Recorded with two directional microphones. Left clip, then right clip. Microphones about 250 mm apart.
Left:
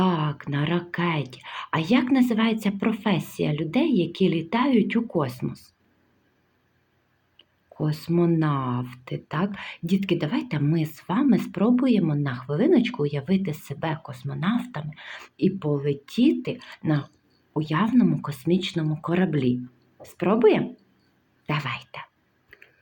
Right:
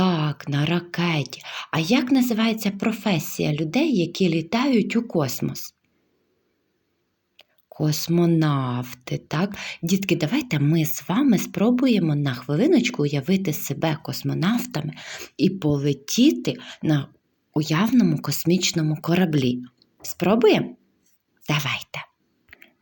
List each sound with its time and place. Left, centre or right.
0.0 s speech: right
7.3 s speech: right
21.4 s whispering: right